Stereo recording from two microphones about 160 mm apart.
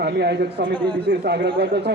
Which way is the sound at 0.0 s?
90° right.